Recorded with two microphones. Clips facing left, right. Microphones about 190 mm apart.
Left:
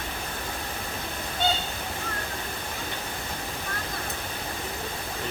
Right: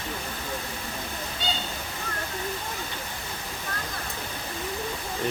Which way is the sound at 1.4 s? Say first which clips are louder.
Left 6 dB; 55° left (ahead or behind).